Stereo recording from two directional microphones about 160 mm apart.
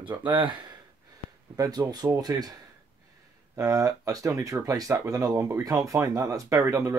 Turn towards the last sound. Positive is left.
turn(degrees=-20)  # may be behind; listen again after turning